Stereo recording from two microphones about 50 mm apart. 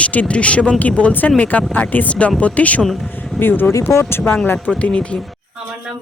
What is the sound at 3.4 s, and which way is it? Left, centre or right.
Speech, left.